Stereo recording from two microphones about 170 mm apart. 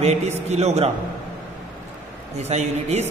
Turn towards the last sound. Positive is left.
turn(degrees=-40)  # may be behind; listen again after turning